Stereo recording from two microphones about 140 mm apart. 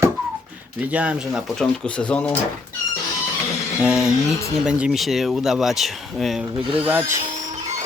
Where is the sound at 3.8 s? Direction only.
5° right (ahead or behind).